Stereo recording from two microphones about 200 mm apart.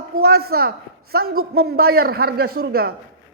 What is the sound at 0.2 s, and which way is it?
A man's voice, 50° right (ahead or behind).